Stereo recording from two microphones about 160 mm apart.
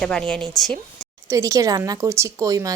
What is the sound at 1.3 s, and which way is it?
Speech, 20° right (ahead or behind).